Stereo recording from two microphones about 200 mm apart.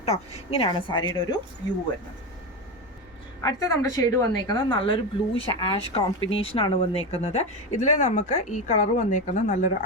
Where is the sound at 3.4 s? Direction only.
15° left (ahead or behind).